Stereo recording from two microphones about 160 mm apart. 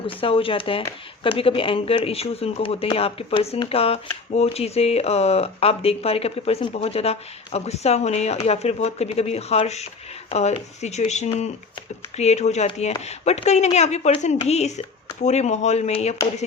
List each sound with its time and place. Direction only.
0.2 s speech: 35° left (ahead or behind)